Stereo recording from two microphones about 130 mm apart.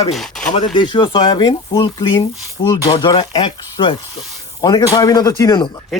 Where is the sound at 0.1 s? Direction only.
Centre (ahead or behind).